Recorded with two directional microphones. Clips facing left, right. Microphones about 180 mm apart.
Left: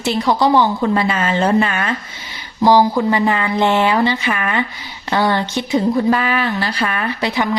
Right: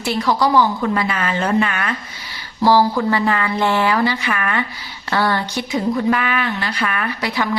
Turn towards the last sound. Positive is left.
turn(degrees=20)  # may be behind; listen again after turning